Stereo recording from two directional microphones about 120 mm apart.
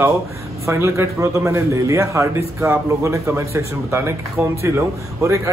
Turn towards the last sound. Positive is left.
turn(degrees=-25)  # may be behind; listen again after turning